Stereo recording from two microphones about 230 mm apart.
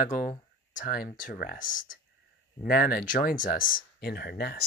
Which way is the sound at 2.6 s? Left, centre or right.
Left.